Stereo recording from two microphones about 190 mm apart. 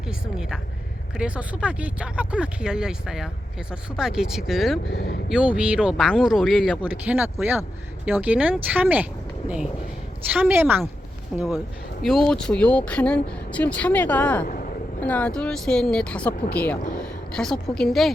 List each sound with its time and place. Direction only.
0.1 s speech: 5° right (ahead or behind)
4.9 s speech: 60° left (ahead or behind)
5.3 s speech: 5° right (ahead or behind)
10.3 s speech: 10° right (ahead or behind); by 14.4 s 10° left (ahead or behind)
14.4 s vehicle: 50° left (ahead or behind)
15.0 s a woman's voice: 5° left (ahead or behind)